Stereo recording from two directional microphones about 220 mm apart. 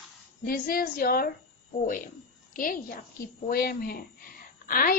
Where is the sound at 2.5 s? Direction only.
40° left (ahead or behind).